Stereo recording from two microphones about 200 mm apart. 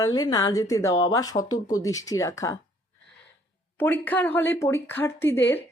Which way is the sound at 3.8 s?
10° left (ahead or behind).